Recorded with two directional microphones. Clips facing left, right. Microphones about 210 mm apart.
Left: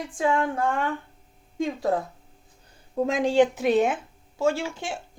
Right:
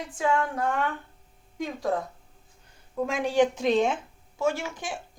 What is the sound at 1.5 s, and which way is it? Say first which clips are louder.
Speech: left 5 dB; 25° left (ahead or behind).